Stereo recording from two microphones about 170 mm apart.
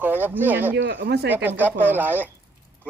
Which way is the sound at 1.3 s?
10° right (ahead or behind).